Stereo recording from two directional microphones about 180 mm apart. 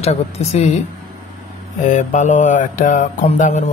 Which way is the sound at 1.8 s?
45° left (ahead or behind).